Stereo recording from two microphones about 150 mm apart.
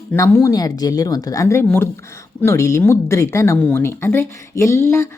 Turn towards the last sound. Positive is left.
turn(degrees=15)  # may be behind; listen again after turning